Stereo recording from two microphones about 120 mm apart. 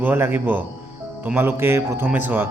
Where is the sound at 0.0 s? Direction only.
20° right (ahead or behind).